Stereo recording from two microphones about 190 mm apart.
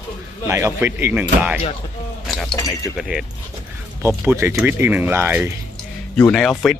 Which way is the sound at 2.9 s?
Centre (ahead or behind).